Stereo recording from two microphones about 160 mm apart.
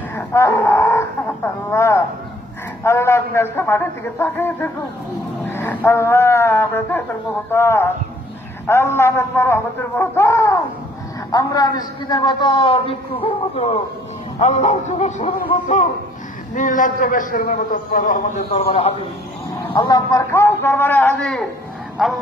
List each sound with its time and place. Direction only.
0.1 s a man's voice: 15° left (ahead or behind); by 15.4 s 50° left (ahead or behind)
16.5 s a man's voice: 55° left (ahead or behind)
18.5 s a man's voice: 40° left (ahead or behind)
19.7 s a man's voice: 25° left (ahead or behind); by 22.1 s centre (ahead or behind)